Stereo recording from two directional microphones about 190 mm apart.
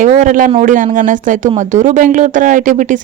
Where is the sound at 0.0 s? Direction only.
45° right (ahead or behind).